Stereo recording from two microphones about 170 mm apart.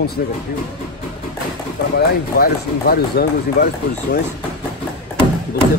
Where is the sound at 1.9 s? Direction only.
65° left (ahead or behind).